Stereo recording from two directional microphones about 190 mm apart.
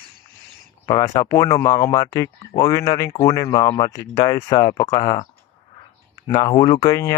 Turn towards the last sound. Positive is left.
turn(degrees=20)  # may be behind; listen again after turning